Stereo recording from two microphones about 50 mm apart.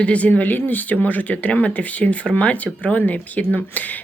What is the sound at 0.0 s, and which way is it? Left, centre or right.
Speech, left.